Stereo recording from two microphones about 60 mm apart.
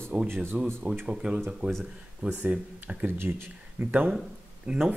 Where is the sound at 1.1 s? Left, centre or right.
Centre; by 4.0 s right.